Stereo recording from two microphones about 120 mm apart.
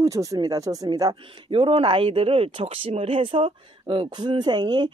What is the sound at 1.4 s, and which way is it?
Speech, 45° right (ahead or behind).